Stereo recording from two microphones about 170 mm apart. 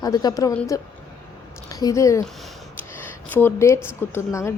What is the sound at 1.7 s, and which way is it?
Speech, 20° left (ahead or behind).